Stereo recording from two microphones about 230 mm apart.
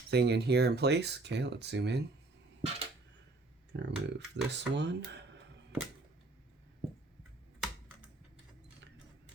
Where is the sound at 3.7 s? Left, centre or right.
Right.